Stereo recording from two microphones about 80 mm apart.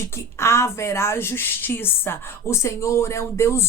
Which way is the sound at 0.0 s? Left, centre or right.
Left.